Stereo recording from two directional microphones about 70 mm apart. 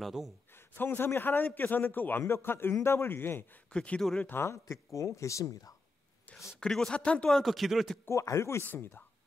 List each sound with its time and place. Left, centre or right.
0.0 s speech: centre
0.7 s a man's voice: left
3.7 s speech: centre
4.3 s a man's voice: left
4.6 s speech: left
6.6 s speech: centre
7.2 s speech: centre
8.1 s a man's voice: left